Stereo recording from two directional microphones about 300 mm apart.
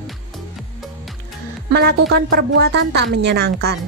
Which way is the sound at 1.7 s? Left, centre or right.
Right.